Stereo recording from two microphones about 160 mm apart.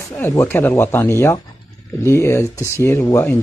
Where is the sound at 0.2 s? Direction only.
15° left (ahead or behind).